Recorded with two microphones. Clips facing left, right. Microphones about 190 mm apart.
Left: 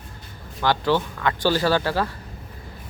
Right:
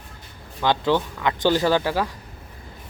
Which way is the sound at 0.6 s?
20° right (ahead or behind).